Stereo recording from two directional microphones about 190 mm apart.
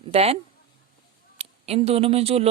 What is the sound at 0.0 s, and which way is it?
Speech, 30° right (ahead or behind).